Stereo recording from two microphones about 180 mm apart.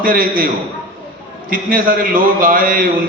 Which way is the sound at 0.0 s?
50° right (ahead or behind).